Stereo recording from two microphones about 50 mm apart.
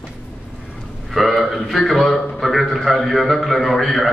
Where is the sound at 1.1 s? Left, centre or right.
Centre.